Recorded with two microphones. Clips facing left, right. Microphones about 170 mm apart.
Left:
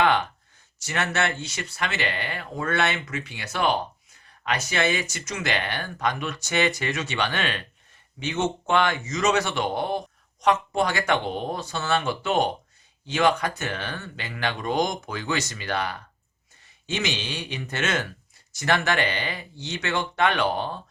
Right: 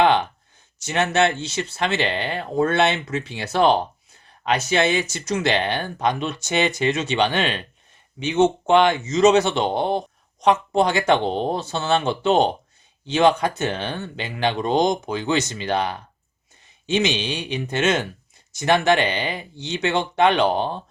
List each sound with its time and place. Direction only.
0.8 s speech: 20° right (ahead or behind)